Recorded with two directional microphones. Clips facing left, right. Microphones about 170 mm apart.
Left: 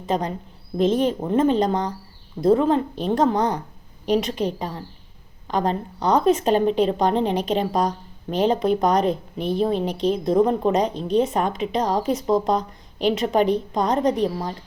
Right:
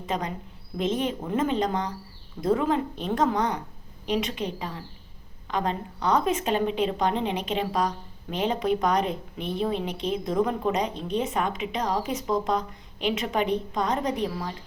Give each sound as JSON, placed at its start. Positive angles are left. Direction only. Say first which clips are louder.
{"t": 0.0, "sound": "speech", "louder": "left 6 dB", "side_deg": 35}